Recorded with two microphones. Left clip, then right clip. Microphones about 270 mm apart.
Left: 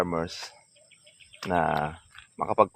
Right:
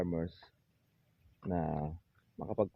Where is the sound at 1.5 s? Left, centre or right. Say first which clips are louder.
Left 12 dB; left.